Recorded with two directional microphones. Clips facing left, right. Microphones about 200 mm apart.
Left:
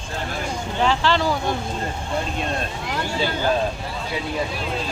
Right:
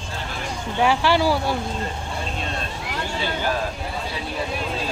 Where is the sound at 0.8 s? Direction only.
10° right (ahead or behind).